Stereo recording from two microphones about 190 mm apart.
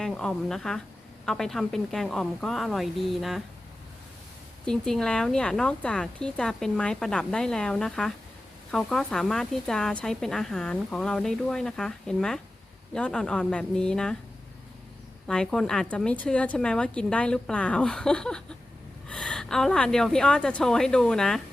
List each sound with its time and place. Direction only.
0.0 s speech: 5° left (ahead or behind)
4.6 s speech: 5° left (ahead or behind)
15.3 s speech: 5° left (ahead or behind)